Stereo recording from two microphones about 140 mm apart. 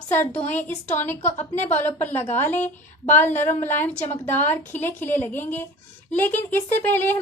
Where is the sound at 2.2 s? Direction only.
55° left (ahead or behind).